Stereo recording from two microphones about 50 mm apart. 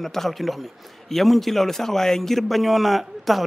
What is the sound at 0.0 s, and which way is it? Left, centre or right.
A man's voice, centre.